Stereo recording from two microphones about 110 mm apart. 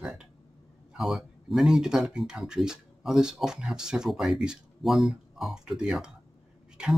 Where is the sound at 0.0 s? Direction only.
5° right (ahead or behind).